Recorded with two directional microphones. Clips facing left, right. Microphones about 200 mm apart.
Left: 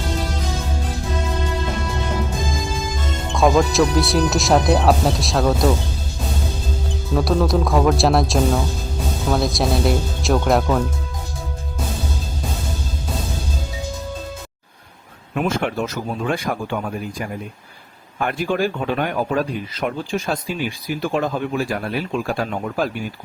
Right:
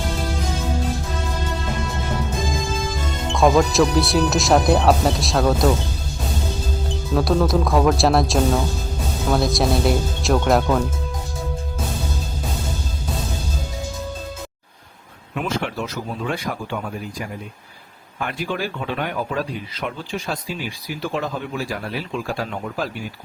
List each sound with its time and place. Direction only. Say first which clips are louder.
3.3 s speech: even; centre (ahead or behind)
7.1 s speech: even; centre (ahead or behind)
15.4 s speech: left 4 dB; 50° left (ahead or behind)
18.2 s speech: left 5 dB; 50° left (ahead or behind)